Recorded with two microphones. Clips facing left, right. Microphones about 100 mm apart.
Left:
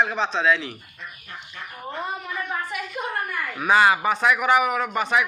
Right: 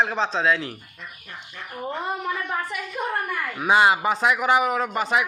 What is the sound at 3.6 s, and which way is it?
A man's voice, 25° right (ahead or behind).